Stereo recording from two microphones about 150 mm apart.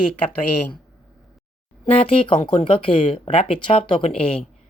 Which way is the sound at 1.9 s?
40° left (ahead or behind).